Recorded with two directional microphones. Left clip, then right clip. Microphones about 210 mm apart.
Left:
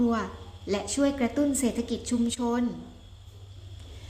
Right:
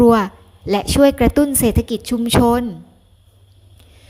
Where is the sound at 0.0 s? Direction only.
50° right (ahead or behind).